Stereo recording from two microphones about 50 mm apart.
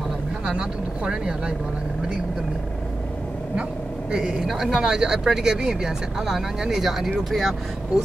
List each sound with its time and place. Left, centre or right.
0.5 s speech: centre
4.1 s speech: centre